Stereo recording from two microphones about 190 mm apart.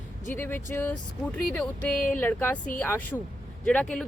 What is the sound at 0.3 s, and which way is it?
Speech, 10° left (ahead or behind).